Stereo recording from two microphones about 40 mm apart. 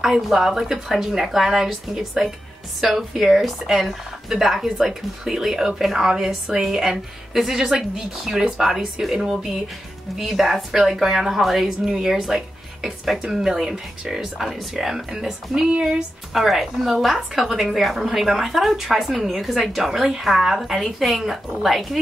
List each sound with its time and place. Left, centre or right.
0.0 s a woman's voice: centre
10.1 s a woman's voice: centre
16.3 s a woman's voice: centre